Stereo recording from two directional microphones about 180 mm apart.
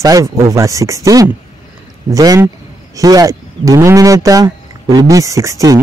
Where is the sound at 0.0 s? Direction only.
20° right (ahead or behind).